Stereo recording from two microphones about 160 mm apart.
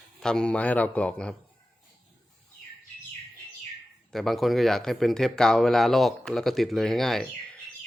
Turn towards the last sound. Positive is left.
turn(degrees=0)  # may be behind; listen again after turning